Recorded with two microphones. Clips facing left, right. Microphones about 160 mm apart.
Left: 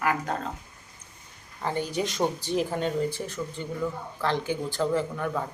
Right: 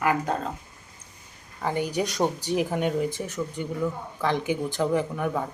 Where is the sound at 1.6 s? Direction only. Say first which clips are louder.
Right 2 dB; 10° right (ahead or behind).